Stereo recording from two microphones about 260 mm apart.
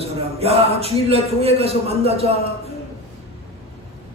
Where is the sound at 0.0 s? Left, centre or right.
Right.